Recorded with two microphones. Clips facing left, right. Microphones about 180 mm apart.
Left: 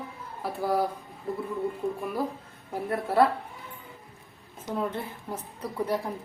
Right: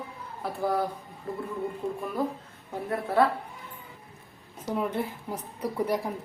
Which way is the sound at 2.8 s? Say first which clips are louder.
Left 1 dB; 5° left (ahead or behind).